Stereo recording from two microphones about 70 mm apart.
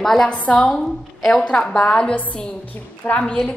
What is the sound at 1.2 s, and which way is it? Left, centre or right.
A woman's voice, centre.